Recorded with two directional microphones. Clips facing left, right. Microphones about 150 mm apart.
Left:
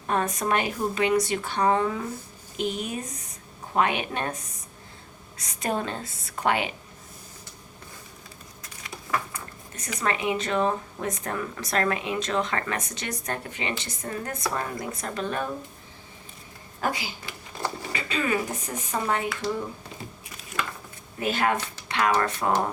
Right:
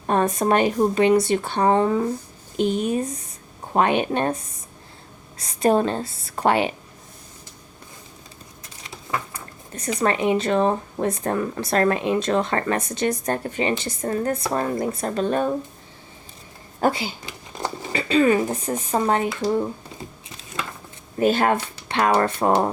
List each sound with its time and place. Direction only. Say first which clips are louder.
0.1 s speech: right 6 dB; 30° right (ahead or behind)
8.8 s speech: right 1 dB; 25° right (ahead or behind)
16.8 s speech: right 7 dB; 30° right (ahead or behind)
20.3 s a sound: even; 25° right (ahead or behind)
21.2 s speech: right 6 dB; 35° right (ahead or behind)